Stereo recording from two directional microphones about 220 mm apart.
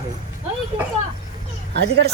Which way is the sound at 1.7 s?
50° right (ahead or behind).